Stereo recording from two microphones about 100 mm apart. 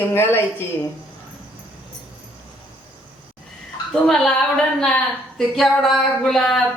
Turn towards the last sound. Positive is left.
turn(degrees=5)  # may be behind; listen again after turning